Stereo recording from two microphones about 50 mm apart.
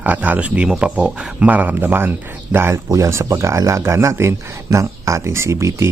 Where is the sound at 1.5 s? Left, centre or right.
Right.